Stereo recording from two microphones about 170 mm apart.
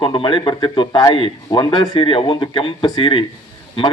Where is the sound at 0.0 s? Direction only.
30° left (ahead or behind).